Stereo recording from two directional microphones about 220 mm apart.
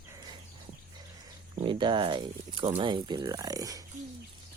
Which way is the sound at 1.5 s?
20° right (ahead or behind).